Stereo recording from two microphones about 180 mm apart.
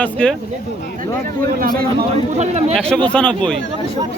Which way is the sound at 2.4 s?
40° right (ahead or behind).